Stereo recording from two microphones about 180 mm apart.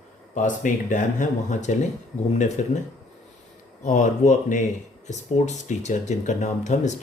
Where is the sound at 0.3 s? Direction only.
45° left (ahead or behind).